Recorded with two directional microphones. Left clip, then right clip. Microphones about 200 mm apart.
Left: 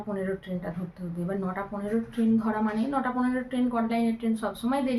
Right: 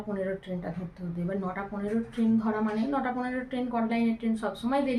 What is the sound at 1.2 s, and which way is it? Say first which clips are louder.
A woman's voice: left 1 dB; 5° left (ahead or behind).